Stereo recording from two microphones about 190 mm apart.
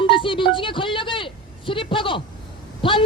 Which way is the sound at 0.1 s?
25° left (ahead or behind).